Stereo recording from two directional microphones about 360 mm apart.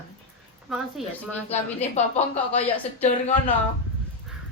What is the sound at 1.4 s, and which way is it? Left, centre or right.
Speech, centre.